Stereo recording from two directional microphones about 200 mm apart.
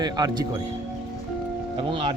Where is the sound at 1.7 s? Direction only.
25° right (ahead or behind).